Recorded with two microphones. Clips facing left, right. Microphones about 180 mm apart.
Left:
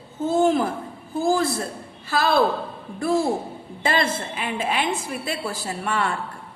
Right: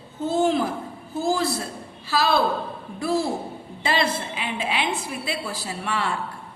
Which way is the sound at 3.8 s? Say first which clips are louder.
Left 1 dB; 50° left (ahead or behind).